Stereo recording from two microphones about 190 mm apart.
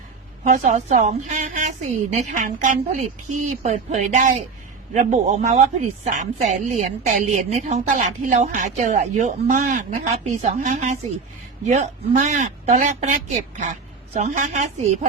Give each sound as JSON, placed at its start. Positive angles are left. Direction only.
{"t": 0.5, "sound": "a woman's voice", "side_deg": -40}